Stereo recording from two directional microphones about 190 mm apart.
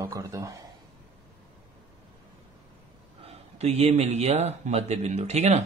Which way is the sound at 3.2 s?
30° right (ahead or behind).